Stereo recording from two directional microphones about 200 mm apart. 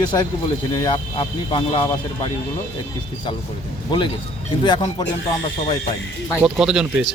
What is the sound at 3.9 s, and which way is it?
Speech, 25° left (ahead or behind).